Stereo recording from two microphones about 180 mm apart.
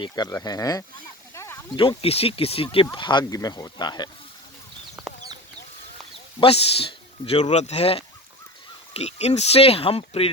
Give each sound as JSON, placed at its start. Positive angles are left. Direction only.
{"t": 0.0, "sound": "speech", "side_deg": 20}
{"t": 1.3, "sound": "a sound", "side_deg": 15}
{"t": 1.7, "sound": "speech", "side_deg": 30}
{"t": 5.1, "sound": "chicken", "side_deg": 0}
{"t": 6.4, "sound": "speech", "side_deg": 30}